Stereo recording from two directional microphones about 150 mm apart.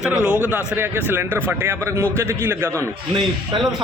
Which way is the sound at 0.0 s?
5° right (ahead or behind).